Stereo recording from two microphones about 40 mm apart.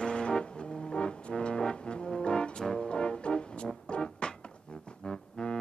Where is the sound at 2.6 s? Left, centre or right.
Centre.